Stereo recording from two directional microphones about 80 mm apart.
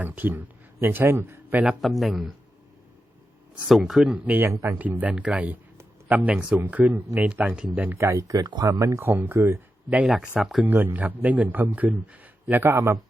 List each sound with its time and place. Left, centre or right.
0.0 s speech: right
1.8 s speech: centre
3.7 s speech: centre
4.2 s a man's voice: centre
4.4 s speech: right
4.7 s a man's voice: right
7.9 s speech: right
10.1 s speech: centre
10.7 s a man's voice: right